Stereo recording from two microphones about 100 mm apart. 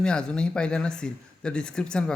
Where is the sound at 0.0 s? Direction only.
10° left (ahead or behind).